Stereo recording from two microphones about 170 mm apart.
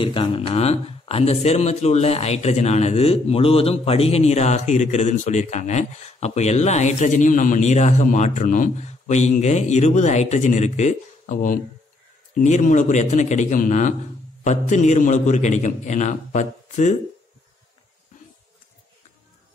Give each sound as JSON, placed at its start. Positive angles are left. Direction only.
{"t": 0.0, "sound": "a man's voice", "side_deg": 30}